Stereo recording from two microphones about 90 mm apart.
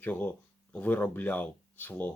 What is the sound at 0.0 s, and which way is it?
Speech, 20° left (ahead or behind).